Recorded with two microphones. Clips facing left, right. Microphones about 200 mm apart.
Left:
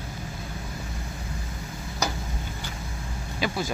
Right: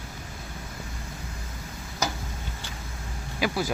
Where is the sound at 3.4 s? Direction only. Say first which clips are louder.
Right 2 dB; 10° right (ahead or behind).